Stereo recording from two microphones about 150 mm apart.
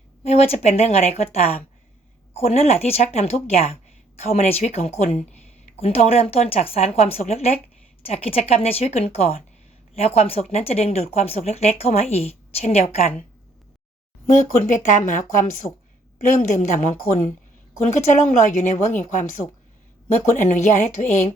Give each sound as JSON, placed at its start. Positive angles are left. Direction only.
{"t": 0.3, "sound": "speech", "side_deg": 45}
{"t": 14.3, "sound": "speech", "side_deg": 60}
{"t": 16.3, "sound": "speech", "side_deg": 55}